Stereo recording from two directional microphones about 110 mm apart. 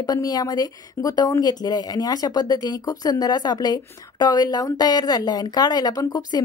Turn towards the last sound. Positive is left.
turn(degrees=35)  # may be behind; listen again after turning